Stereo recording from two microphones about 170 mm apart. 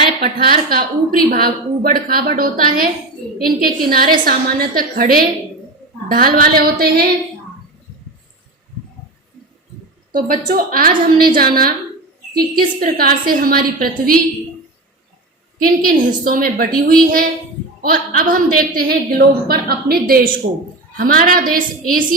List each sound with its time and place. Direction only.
0.2 s a woman's voice: 60° right (ahead or behind)
10.1 s a woman's voice: 55° right (ahead or behind)
15.5 s a woman's voice: 55° right (ahead or behind)